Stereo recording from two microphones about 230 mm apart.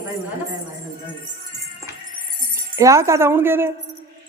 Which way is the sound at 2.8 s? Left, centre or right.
Centre.